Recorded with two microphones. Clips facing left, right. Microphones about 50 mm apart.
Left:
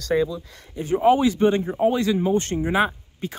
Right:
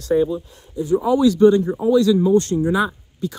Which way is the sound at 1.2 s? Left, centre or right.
Left.